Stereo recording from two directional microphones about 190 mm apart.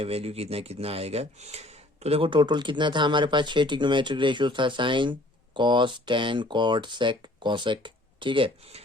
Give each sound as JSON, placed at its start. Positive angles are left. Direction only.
{"t": 0.0, "sound": "speech", "side_deg": -30}